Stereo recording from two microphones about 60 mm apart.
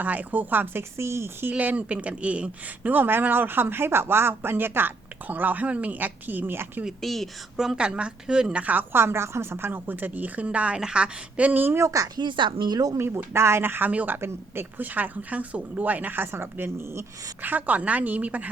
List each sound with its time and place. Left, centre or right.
0.0 s speech: right
1.5 s speech: right
2.9 s speech: right
7.0 s a woman's voice: centre
8.6 s speech: right
11.7 s speech: right
13.0 s speech: right
13.9 s speech: right
14.2 s speech: right
14.8 s speech: right
17.4 s speech: right